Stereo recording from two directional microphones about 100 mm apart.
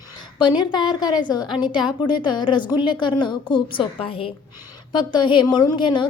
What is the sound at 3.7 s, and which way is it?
Speech, 65° left (ahead or behind).